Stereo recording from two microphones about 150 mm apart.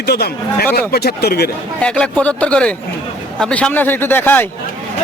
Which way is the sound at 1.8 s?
5° left (ahead or behind).